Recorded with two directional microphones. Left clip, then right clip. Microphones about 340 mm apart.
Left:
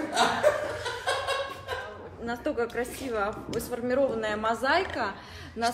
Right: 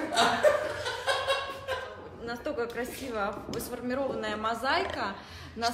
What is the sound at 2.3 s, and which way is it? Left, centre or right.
A woman's voice, left.